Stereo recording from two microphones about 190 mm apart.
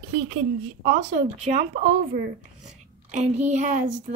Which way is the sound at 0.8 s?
35° right (ahead or behind).